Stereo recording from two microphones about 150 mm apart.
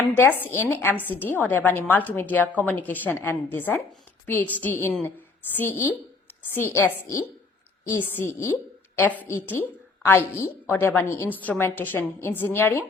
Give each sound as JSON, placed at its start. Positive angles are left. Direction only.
{"t": 0.0, "sound": "a woman's voice", "side_deg": 15}